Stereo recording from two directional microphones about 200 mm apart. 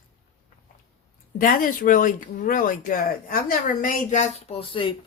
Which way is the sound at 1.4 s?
45° left (ahead or behind).